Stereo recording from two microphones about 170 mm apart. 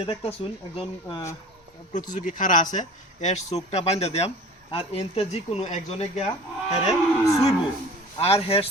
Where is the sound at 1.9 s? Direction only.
50° left (ahead or behind).